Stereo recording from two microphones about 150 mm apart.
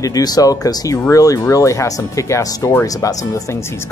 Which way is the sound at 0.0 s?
25° left (ahead or behind).